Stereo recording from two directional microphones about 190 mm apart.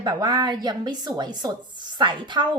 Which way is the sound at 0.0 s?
20° right (ahead or behind).